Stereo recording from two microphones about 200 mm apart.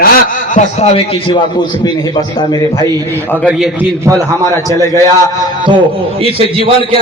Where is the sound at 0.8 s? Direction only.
30° left (ahead or behind).